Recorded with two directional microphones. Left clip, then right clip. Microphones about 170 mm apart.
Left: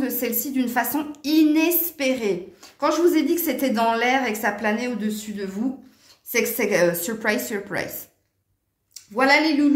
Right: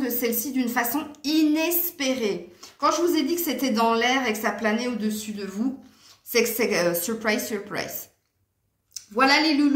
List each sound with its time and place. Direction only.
0.0 s a woman's voice: 40° left (ahead or behind)